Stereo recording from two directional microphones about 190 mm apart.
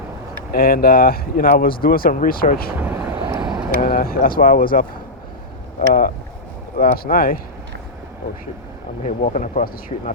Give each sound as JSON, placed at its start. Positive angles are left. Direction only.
{"t": 0.5, "sound": "speech", "side_deg": 50}
{"t": 2.7, "sound": "vehicle", "side_deg": -10}
{"t": 3.8, "sound": "speech", "side_deg": 50}
{"t": 5.9, "sound": "speech", "side_deg": 45}
{"t": 9.0, "sound": "speech", "side_deg": 40}